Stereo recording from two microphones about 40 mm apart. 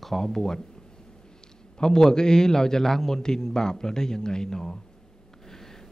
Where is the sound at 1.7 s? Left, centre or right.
Centre.